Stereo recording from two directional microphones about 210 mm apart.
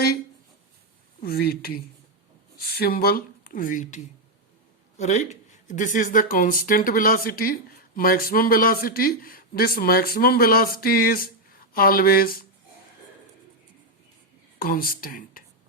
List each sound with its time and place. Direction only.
1.2 s speech: 45° left (ahead or behind)
14.6 s speech: 45° left (ahead or behind)